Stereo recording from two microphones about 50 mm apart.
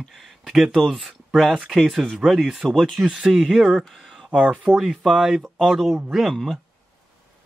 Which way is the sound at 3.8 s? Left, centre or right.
Centre.